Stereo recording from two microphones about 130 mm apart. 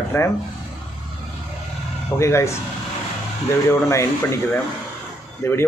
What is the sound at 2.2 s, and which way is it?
A man's voice, 20° left (ahead or behind).